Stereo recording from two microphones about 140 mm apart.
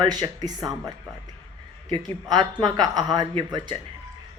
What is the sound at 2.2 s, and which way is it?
Speech, 30° right (ahead or behind).